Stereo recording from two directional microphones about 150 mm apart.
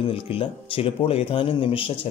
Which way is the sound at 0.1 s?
40° left (ahead or behind).